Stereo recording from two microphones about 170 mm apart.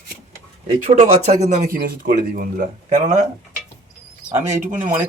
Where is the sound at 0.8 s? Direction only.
40° right (ahead or behind).